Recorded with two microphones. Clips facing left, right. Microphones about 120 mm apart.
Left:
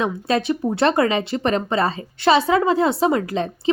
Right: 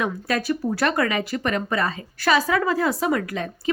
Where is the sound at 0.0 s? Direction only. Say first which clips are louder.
Left 4 dB; 25° left (ahead or behind).